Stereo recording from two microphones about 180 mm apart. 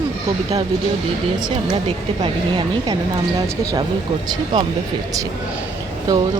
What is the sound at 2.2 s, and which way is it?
Speech, 25° right (ahead or behind).